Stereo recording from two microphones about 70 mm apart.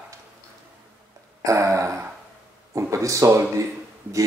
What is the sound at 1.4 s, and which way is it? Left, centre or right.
Speech, right.